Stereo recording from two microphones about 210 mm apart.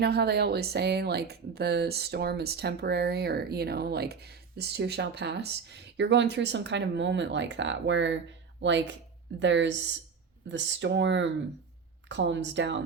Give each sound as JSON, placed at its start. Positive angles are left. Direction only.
{"t": 0.0, "sound": "speech", "side_deg": -50}